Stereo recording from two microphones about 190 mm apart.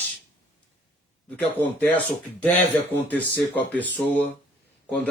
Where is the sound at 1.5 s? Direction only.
10° left (ahead or behind).